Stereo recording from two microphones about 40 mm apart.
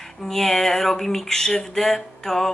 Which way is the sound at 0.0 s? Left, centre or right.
Centre.